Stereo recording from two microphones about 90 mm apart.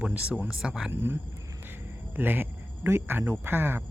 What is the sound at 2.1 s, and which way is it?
Speech, 20° right (ahead or behind).